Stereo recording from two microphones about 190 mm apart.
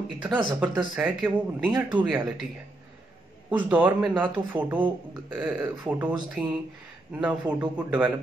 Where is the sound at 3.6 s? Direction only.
10° right (ahead or behind).